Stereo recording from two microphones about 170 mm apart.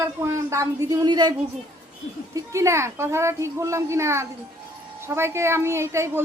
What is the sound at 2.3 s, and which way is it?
A woman's voice, 20° right (ahead or behind).